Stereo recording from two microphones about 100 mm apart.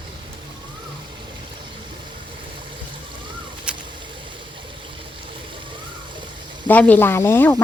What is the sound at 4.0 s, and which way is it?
Stream, 55° right (ahead or behind).